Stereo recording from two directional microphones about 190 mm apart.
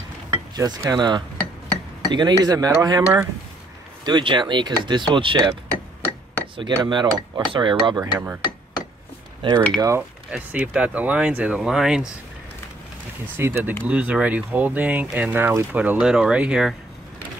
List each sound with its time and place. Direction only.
0.6 s speech: 20° right (ahead or behind)
6.5 s speech: 25° right (ahead or behind)
9.8 s speech: 15° right (ahead or behind)
13.4 s speech: 10° right (ahead or behind)